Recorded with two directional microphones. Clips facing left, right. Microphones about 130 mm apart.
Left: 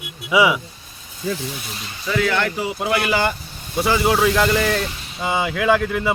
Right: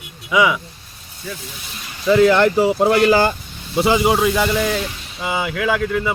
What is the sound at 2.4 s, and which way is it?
Speech, 40° right (ahead or behind).